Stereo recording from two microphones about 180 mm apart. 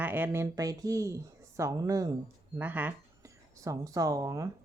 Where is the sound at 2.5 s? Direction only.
10° right (ahead or behind).